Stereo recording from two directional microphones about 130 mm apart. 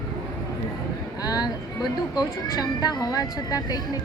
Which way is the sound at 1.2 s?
30° left (ahead or behind).